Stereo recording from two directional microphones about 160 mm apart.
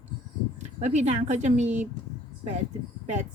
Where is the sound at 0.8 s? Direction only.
45° right (ahead or behind).